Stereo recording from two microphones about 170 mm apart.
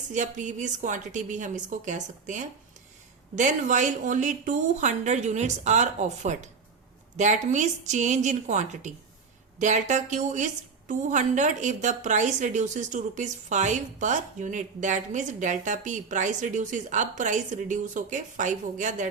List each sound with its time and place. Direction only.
0.1 s a woman's voice: 45° right (ahead or behind)